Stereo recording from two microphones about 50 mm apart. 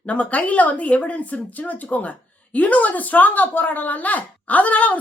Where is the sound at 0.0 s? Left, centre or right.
Left.